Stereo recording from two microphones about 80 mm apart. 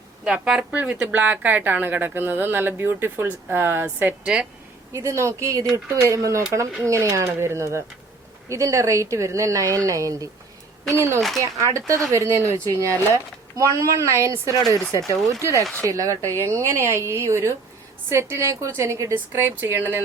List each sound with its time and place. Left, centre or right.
0.3 s a woman's voice: centre; by 4.1 s right
4.9 s a woman's voice: right